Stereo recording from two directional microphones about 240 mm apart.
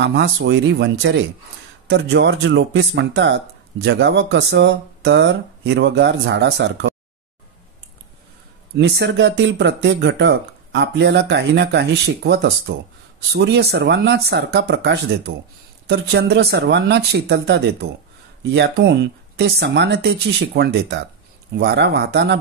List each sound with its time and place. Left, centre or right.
0.0 s speech: right
8.7 s speech: right